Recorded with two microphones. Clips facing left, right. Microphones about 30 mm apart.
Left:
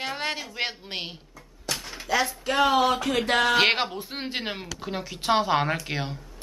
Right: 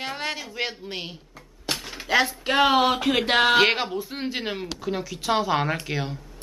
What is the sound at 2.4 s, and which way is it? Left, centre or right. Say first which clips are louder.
Speech: even; right.